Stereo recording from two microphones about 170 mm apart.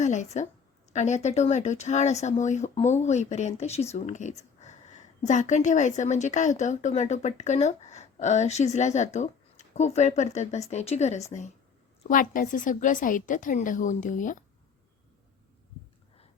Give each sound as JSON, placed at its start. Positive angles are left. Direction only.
{"t": 0.0, "sound": "speech", "side_deg": 45}
{"t": 12.0, "sound": "speech", "side_deg": 50}